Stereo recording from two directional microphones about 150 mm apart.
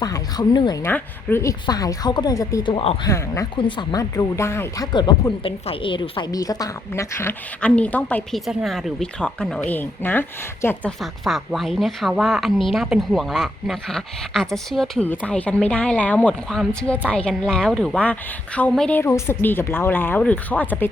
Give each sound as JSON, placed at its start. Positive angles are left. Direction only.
{"t": 0.0, "sound": "speech", "side_deg": 25}
{"t": 0.8, "sound": "a woman's voice", "side_deg": 15}
{"t": 2.7, "sound": "speech", "side_deg": 35}
{"t": 3.1, "sound": "a woman's voice", "side_deg": 20}
{"t": 3.5, "sound": "a woman's voice", "side_deg": 35}
{"t": 4.9, "sound": "a woman's voice", "side_deg": 30}
{"t": 8.4, "sound": "a woman's voice", "side_deg": 0}
{"t": 11.0, "sound": "a woman's voice", "side_deg": 0}